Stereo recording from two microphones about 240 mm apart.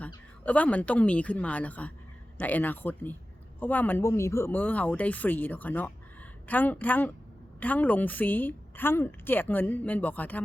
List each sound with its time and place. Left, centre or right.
0.4 s a woman's voice: centre